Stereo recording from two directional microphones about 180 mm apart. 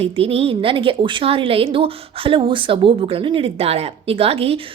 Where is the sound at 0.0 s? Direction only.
35° right (ahead or behind).